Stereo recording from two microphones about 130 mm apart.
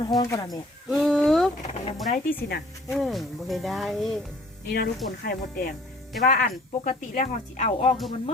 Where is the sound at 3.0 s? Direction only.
Centre (ahead or behind).